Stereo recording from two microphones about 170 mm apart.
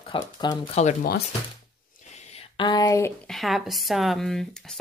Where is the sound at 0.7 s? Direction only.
40° left (ahead or behind).